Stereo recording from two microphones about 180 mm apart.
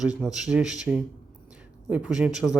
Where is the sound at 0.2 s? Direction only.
5° right (ahead or behind).